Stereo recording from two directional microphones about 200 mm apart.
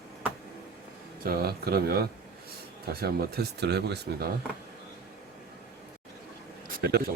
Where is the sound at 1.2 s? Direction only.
50° right (ahead or behind).